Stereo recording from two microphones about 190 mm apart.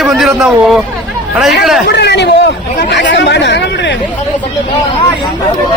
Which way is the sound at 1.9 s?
65° left (ahead or behind).